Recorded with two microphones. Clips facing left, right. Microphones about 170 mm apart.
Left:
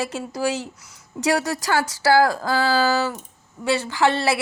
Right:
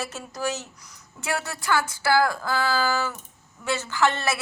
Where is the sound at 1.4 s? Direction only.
90° left.